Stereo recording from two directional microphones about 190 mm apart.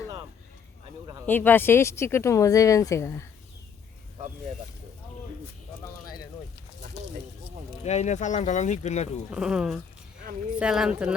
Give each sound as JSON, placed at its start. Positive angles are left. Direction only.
{"t": 1.3, "sound": "speech", "side_deg": 10}
{"t": 7.9, "sound": "speech", "side_deg": 35}
{"t": 9.3, "sound": "speech", "side_deg": -5}